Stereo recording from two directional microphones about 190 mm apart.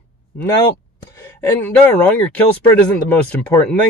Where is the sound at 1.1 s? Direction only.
10° left (ahead or behind).